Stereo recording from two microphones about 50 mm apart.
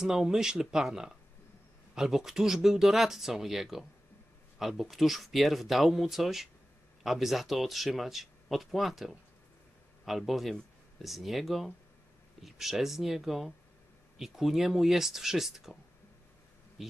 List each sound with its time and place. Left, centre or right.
0.0 s speech: centre